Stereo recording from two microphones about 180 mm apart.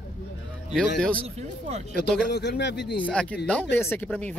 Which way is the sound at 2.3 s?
65° left (ahead or behind).